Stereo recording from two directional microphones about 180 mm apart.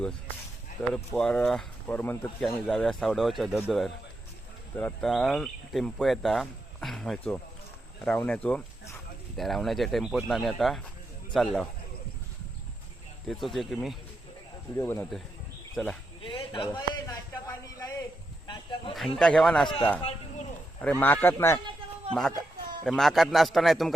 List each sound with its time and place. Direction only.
0.8 s speech: 5° left (ahead or behind)
13.2 s speech: centre (ahead or behind)
14.8 s speech: 15° left (ahead or behind)
16.2 s a man's voice: 30° left (ahead or behind)
17.3 s a sound: 20° left (ahead or behind)
18.9 s speech: centre (ahead or behind)
20.0 s a sound: 35° left (ahead or behind)
21.0 s speech: 10° left (ahead or behind)
22.8 s speech: centre (ahead or behind)